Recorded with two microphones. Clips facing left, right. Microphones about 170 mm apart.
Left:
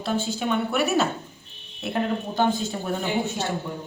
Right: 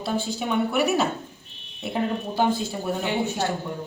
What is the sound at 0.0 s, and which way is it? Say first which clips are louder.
A woman's voice: left 1 dB; 5° right (ahead or behind).